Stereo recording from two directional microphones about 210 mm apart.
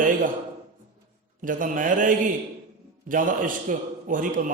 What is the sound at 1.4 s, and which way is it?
A man's voice, 40° right (ahead or behind).